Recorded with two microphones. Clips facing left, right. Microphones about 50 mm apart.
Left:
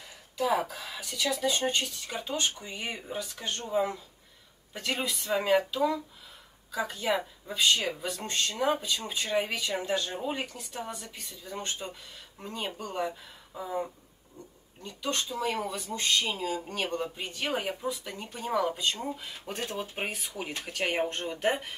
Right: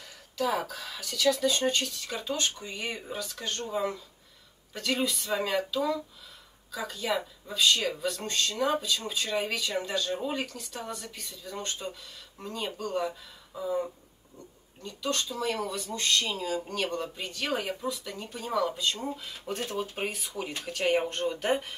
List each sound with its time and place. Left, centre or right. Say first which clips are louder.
0.4 s speech: left 1 dB; left
11.8 s speech: right 1 dB; centre
20.9 s speech: right 3 dB; centre
21.2 s speech: right 1 dB; left